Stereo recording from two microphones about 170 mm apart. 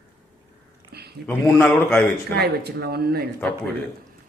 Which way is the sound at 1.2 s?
10° left (ahead or behind).